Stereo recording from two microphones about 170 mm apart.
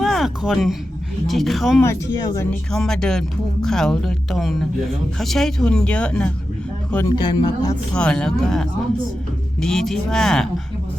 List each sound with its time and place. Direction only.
0.0 s a sound: centre (ahead or behind)
1.3 s speech: centre (ahead or behind)
1.8 s speech: 15° left (ahead or behind)
2.7 s speech: 5° left (ahead or behind)
7.2 s speech: 25° left (ahead or behind)
7.9 s speech: 5° left (ahead or behind)